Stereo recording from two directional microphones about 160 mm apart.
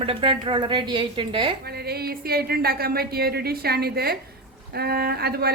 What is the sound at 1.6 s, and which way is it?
Speech, 80° right.